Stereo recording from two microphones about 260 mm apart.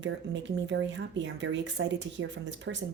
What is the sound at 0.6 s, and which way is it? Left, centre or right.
Speech, right.